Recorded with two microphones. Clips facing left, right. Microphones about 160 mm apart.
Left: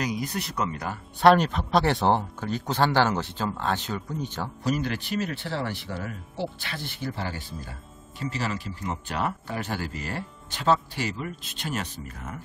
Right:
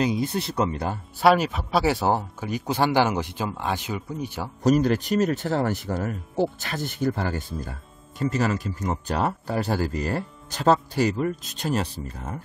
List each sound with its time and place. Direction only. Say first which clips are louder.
0.0 s speech: right 5 dB; 25° right (ahead or behind)
1.2 s speech: left 1 dB; 5° right (ahead or behind)
4.6 s speech: right 8 dB; 40° right (ahead or behind)